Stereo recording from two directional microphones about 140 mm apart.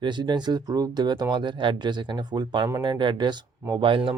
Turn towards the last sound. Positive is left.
turn(degrees=-40)  # may be behind; listen again after turning